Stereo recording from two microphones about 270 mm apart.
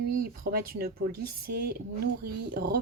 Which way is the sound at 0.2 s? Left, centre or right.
Right.